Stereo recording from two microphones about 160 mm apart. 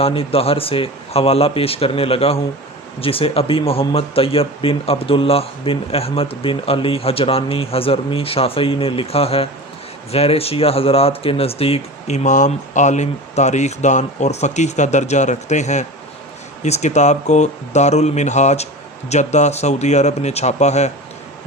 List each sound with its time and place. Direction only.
0.0 s speech: 35° left (ahead or behind)